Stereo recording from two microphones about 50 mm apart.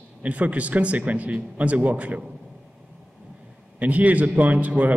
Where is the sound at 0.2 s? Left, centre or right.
Right.